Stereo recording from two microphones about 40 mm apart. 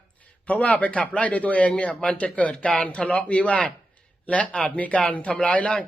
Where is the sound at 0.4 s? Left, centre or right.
Left.